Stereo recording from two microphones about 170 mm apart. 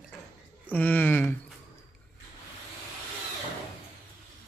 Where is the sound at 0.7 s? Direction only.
10° left (ahead or behind).